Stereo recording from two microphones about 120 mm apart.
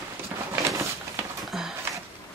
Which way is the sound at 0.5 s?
25° right (ahead or behind).